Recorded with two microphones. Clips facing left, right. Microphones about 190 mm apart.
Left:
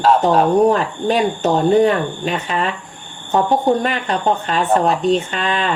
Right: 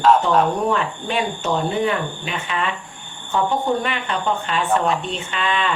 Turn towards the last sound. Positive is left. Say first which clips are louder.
# left 2 dB
turn(degrees=40)  # may be behind; listen again after turning